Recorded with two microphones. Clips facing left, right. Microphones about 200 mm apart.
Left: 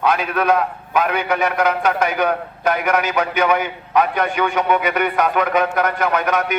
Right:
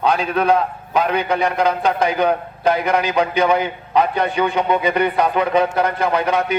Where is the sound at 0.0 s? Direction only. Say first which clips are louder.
Right 1 dB; 30° right (ahead or behind).